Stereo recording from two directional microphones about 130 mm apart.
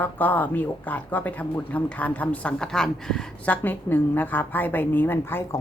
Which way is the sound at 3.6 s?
15° left (ahead or behind).